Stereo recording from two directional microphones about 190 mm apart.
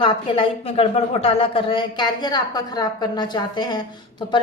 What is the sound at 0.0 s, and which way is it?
A woman's voice, 25° left (ahead or behind).